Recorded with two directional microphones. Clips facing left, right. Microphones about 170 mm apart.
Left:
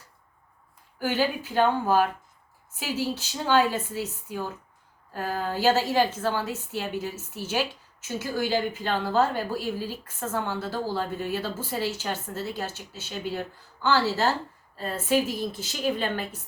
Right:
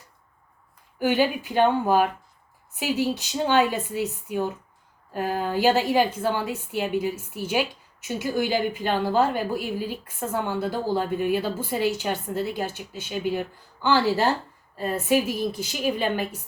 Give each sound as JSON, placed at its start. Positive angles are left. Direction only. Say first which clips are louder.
{"t": 0.9, "sound": "a woman's voice", "louder": "right 4 dB", "side_deg": -15}